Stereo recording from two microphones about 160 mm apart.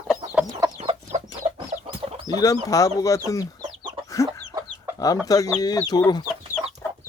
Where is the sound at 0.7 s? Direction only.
40° right (ahead or behind).